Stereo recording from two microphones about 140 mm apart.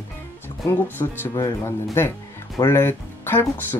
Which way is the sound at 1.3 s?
20° left (ahead or behind).